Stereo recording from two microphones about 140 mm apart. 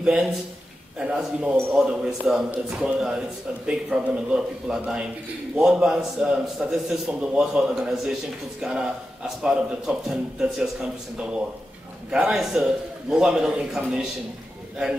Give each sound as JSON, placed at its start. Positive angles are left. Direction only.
{"t": 0.0, "sound": "a man's voice", "side_deg": -5}